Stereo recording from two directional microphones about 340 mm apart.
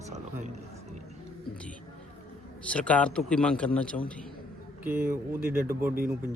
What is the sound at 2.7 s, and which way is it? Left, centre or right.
Speech, centre.